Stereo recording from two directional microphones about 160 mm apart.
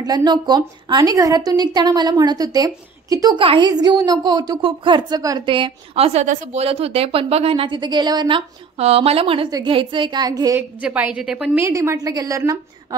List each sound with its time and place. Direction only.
0.0 s a woman's voice: 25° right (ahead or behind)
10.8 s a woman's voice: 10° right (ahead or behind)
11.6 s a woman's voice: 15° right (ahead or behind)